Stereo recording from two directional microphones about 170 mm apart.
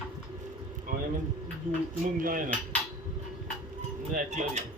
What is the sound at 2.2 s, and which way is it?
Dishes, 55° right (ahead or behind).